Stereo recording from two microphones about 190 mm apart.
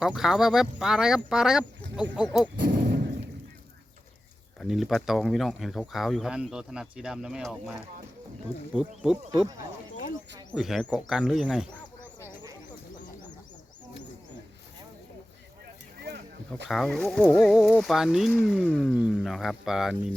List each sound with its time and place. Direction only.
0.1 s speech: centre (ahead or behind)
2.6 s a sound: 65° right (ahead or behind)
4.6 s speech: centre (ahead or behind)
8.7 s speech: 5° right (ahead or behind)
10.5 s speech: centre (ahead or behind)
16.0 s a sound: 55° right (ahead or behind)
16.6 s speech: centre (ahead or behind)